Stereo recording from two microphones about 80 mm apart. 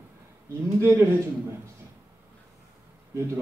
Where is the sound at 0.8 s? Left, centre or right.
Right.